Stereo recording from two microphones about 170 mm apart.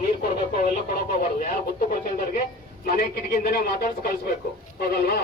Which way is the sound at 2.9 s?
60° left (ahead or behind).